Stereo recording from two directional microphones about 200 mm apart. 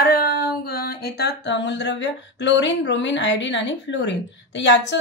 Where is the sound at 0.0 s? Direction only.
50° left (ahead or behind).